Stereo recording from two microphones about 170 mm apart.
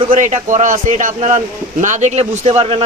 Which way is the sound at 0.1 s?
50° right (ahead or behind).